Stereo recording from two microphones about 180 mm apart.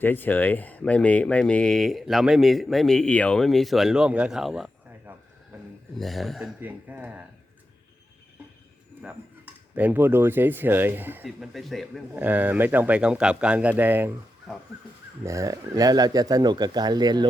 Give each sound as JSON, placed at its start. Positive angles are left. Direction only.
{"t": 0.0, "sound": "speech", "side_deg": 10}
{"t": 6.0, "sound": "speech", "side_deg": 0}
{"t": 6.6, "sound": "speech", "side_deg": -10}
{"t": 9.7, "sound": "speech", "side_deg": -10}
{"t": 11.3, "sound": "speech", "side_deg": 0}
{"t": 12.1, "sound": "speech", "side_deg": -10}
{"t": 15.2, "sound": "speech", "side_deg": -15}